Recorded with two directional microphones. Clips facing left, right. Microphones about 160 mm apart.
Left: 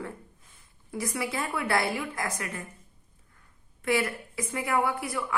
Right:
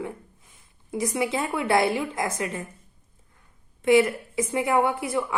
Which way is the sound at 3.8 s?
20° right (ahead or behind).